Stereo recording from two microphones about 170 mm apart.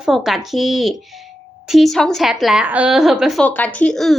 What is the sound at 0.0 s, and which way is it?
A woman's voice, 5° right (ahead or behind).